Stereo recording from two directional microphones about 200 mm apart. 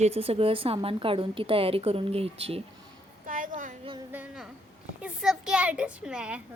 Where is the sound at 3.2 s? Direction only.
40° right (ahead or behind).